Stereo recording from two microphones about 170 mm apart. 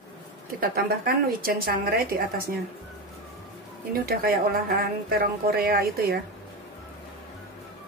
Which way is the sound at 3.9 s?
60° right (ahead or behind).